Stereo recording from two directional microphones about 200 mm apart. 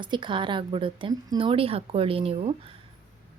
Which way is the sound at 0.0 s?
25° right (ahead or behind).